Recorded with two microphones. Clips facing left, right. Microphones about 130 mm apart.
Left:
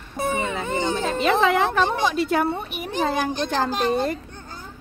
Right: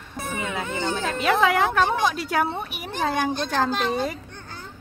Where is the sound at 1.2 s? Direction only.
5° right (ahead or behind).